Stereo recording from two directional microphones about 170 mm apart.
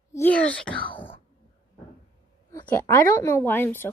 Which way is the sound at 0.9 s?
30° left (ahead or behind).